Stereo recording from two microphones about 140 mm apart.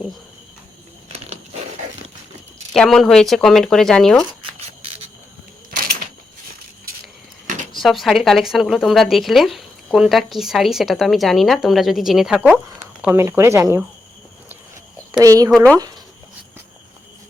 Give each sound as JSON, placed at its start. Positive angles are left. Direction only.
{"t": 1.1, "sound": "biting", "side_deg": -50}
{"t": 2.7, "sound": "speech", "side_deg": 0}
{"t": 5.7, "sound": "a sound", "side_deg": -90}
{"t": 7.8, "sound": "speech", "side_deg": 0}
{"t": 13.0, "sound": "speech", "side_deg": -20}
{"t": 15.2, "sound": "speech", "side_deg": -25}
{"t": 15.4, "sound": "speech", "side_deg": 5}